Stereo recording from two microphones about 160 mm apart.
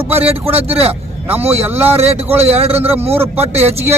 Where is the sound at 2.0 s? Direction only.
40° right (ahead or behind).